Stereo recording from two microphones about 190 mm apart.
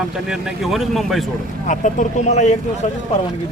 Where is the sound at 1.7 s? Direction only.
40° left (ahead or behind).